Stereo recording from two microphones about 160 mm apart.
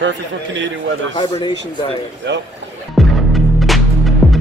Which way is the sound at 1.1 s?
30° left (ahead or behind).